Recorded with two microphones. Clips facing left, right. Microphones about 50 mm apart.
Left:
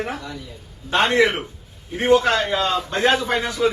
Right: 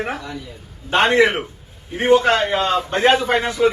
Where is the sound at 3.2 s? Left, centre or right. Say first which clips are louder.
Right 3 dB; right.